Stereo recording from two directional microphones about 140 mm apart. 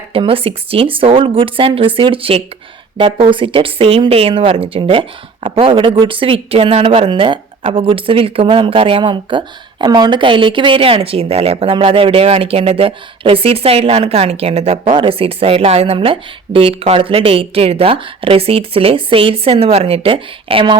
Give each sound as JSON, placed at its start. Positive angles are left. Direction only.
{"t": 0.1, "sound": "speech", "side_deg": -40}